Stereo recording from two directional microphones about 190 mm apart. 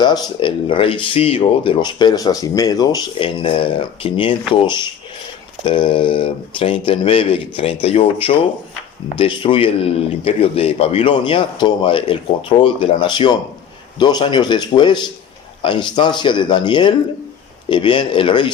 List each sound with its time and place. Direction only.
0.0 s speech: 25° left (ahead or behind)